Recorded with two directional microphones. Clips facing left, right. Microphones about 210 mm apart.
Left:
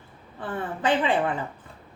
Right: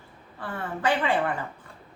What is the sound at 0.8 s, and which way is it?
Speech, 20° left (ahead or behind).